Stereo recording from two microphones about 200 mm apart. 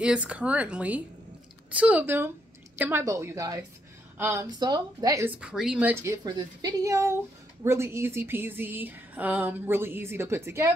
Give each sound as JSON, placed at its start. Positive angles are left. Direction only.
{"t": 0.0, "sound": "a woman's voice", "side_deg": -5}
{"t": 5.4, "sound": "speech", "side_deg": -5}
{"t": 6.2, "sound": "a woman's voice", "side_deg": -20}